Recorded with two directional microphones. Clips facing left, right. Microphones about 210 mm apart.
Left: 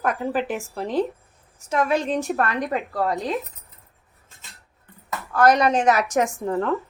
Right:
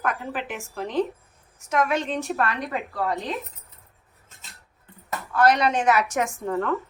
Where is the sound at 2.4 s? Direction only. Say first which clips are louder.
Left 3 dB; 45° left (ahead or behind).